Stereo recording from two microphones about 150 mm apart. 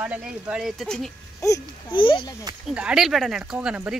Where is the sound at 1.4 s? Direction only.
20° left (ahead or behind).